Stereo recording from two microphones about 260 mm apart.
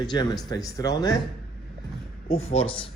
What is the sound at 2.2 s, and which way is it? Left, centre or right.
Speech, left.